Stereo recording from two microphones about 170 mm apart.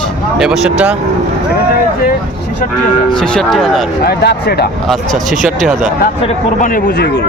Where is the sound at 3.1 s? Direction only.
5° left (ahead or behind).